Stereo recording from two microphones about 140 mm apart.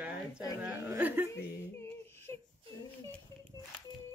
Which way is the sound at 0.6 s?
15° right (ahead or behind).